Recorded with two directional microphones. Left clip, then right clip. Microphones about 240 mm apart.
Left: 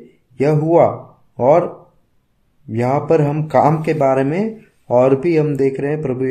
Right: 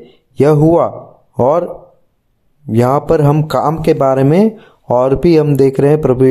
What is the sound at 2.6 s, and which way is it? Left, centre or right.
Speech, right.